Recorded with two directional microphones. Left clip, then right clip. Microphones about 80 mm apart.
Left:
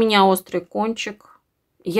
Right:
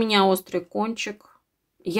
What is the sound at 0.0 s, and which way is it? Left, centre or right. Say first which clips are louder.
A woman's voice: left 4 dB; left.